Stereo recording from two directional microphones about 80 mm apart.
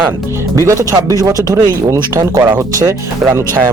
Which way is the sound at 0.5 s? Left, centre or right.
Right.